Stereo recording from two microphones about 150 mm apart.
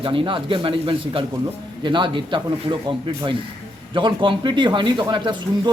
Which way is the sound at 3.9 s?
35° right (ahead or behind).